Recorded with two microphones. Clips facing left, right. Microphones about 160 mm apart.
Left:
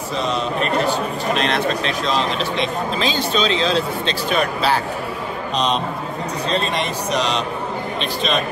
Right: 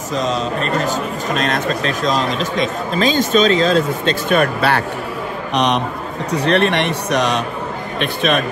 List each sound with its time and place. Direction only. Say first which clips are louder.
0.1 s a man's voice: right 3 dB; 40° right (ahead or behind); by 8.4 s 55° right (ahead or behind)